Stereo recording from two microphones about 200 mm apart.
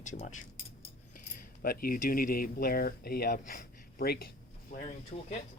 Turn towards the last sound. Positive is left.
turn(degrees=35)  # may be behind; listen again after turning